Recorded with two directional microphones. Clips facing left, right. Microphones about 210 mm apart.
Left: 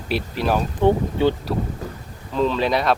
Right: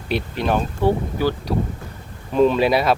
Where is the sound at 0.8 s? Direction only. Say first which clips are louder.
Left 2 dB; 20° left (ahead or behind).